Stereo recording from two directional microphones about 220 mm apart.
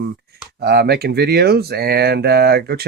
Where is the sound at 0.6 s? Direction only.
45° right (ahead or behind).